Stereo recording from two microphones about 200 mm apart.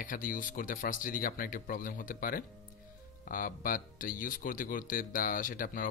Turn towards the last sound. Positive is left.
turn(degrees=45)  # may be behind; listen again after turning